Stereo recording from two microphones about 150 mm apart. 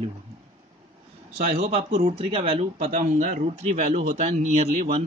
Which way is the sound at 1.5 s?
40° right (ahead or behind).